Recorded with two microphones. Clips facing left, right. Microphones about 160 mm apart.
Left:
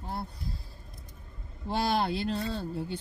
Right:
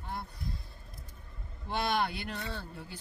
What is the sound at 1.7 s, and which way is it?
Speech, 30° left (ahead or behind).